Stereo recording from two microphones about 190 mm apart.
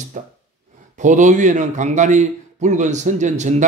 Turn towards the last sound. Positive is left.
turn(degrees=-40)  # may be behind; listen again after turning